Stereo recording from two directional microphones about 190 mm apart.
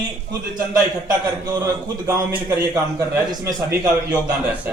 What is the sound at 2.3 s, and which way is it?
A man's voice, 10° right (ahead or behind).